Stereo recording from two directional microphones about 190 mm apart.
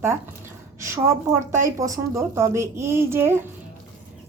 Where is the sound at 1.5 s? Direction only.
15° right (ahead or behind).